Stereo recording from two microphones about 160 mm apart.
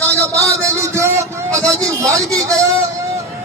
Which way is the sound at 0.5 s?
20° right (ahead or behind).